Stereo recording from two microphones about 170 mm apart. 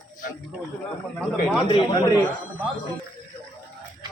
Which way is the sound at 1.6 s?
30° left (ahead or behind).